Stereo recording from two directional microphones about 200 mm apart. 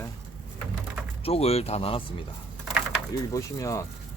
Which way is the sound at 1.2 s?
30° left (ahead or behind).